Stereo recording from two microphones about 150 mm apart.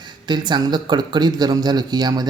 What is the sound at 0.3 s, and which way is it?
Speech, 30° right (ahead or behind).